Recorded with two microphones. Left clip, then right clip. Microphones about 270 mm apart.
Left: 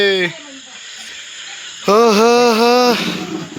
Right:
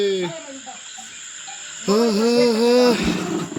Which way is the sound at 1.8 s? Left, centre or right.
Left.